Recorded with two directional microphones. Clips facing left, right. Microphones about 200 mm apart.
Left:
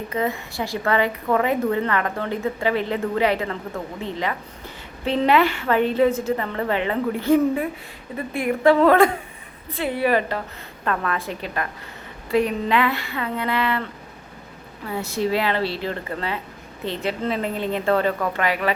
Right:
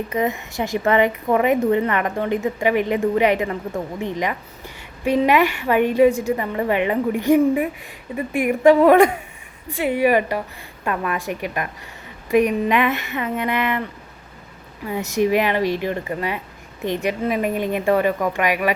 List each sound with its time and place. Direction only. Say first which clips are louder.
0.1 s a woman's voice: left 1 dB; 20° right (ahead or behind)
14.8 s a woman's voice: right 4 dB; 15° right (ahead or behind)